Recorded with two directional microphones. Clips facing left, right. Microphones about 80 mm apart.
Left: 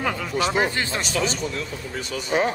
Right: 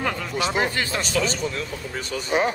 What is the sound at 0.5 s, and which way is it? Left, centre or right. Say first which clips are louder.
Speech: right 1 dB; left.